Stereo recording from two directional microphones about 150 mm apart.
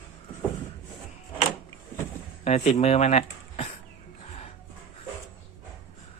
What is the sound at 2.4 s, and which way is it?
Speech, 50° left (ahead or behind).